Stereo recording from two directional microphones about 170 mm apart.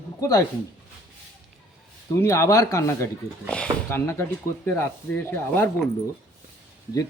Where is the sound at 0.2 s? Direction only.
20° left (ahead or behind).